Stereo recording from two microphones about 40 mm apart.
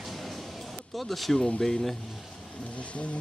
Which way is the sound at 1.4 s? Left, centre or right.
Centre.